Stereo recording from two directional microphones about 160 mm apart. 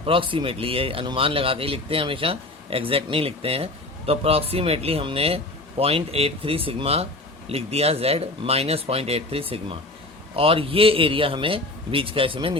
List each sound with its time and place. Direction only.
0.0 s speech: 35° right (ahead or behind)